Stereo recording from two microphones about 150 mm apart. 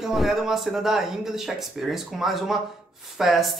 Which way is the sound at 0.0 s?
Centre (ahead or behind).